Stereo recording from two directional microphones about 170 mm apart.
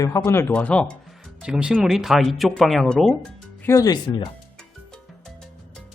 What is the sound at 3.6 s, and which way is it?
Speech, 20° left (ahead or behind).